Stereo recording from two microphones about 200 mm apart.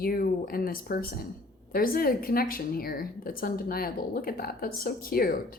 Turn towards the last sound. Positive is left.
turn(degrees=50)  # may be behind; listen again after turning